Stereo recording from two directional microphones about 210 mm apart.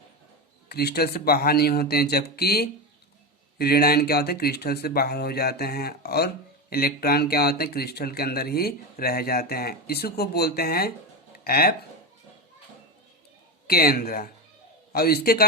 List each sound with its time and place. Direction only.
0.7 s speech: 50° left (ahead or behind)
13.7 s speech: 45° left (ahead or behind)